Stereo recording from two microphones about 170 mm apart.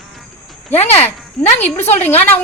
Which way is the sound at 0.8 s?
40° left (ahead or behind).